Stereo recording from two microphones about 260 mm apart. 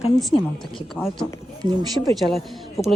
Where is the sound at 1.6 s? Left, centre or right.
Centre.